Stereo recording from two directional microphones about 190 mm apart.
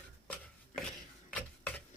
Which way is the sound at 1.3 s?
5° left (ahead or behind).